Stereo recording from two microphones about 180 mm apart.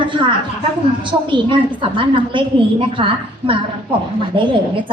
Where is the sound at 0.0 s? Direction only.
25° right (ahead or behind).